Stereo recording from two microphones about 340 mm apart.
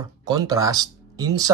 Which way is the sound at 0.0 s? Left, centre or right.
Centre.